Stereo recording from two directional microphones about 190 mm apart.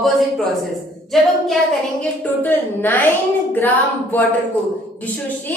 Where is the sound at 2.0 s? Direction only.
10° left (ahead or behind).